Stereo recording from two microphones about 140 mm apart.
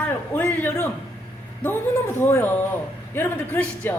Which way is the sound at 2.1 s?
20° left (ahead or behind).